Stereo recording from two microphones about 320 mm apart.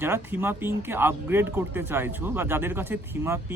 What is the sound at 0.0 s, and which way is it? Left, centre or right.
Speech, centre.